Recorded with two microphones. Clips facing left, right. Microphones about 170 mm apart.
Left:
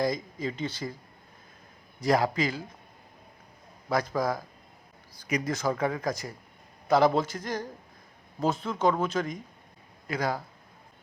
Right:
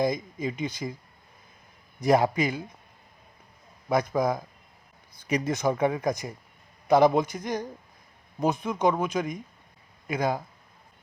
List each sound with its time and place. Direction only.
0.0 s speech: 20° right (ahead or behind)
2.0 s speech: 20° right (ahead or behind)
3.8 s speech: 20° right (ahead or behind)